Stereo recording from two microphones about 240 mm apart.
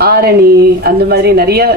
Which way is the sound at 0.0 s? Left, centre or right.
Right.